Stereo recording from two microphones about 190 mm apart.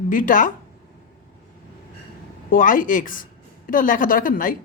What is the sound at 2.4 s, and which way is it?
Speech, 45° left (ahead or behind).